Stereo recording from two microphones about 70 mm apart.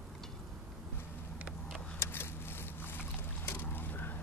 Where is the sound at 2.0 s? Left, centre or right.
Left.